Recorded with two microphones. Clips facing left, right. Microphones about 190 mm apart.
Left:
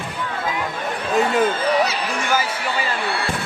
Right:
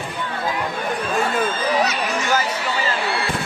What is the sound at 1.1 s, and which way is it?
Speech, 20° left (ahead or behind).